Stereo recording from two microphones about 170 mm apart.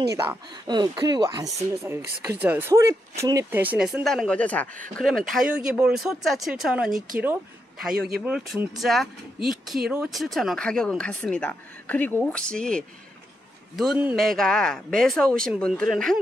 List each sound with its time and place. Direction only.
0.1 s speech: 15° right (ahead or behind)
0.7 s speech: 25° right (ahead or behind); by 7.0 s 5° right (ahead or behind)
8.2 s speech: 5° right (ahead or behind)
13.7 s speech: 5° right (ahead or behind)